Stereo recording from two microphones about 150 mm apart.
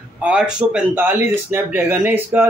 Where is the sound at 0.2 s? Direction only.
5° right (ahead or behind).